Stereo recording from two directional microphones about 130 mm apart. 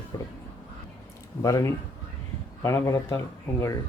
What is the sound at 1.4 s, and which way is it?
Speech, 25° left (ahead or behind).